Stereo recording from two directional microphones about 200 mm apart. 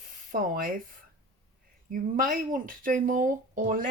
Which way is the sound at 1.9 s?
45° right (ahead or behind).